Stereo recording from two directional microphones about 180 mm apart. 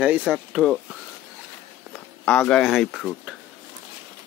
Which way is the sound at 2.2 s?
5° left (ahead or behind).